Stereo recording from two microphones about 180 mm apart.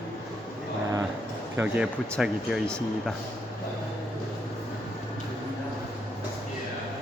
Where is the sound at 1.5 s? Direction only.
10° right (ahead or behind).